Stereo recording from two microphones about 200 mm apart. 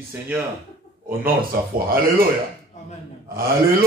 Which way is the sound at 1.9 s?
45° right (ahead or behind).